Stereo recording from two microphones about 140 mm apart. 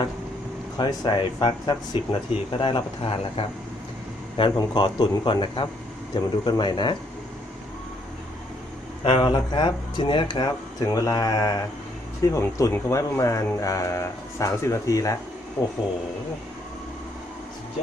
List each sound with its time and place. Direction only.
0.8 s speech: 30° left (ahead or behind)
9.0 s speech: 35° left (ahead or behind)